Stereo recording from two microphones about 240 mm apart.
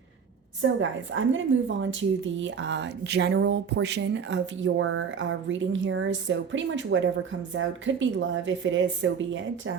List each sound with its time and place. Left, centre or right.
0.8 s speech: right